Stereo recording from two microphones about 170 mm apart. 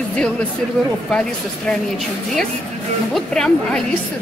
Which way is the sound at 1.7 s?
Centre (ahead or behind).